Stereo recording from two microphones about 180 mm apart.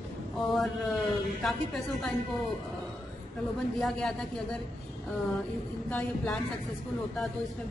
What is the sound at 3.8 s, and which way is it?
Speech, centre (ahead or behind).